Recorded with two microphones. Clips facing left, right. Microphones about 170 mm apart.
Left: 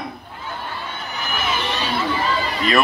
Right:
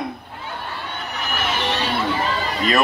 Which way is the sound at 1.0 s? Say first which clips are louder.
Even; 70° right (ahead or behind).